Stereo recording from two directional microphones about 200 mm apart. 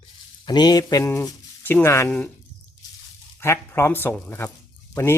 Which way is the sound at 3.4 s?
15° left (ahead or behind).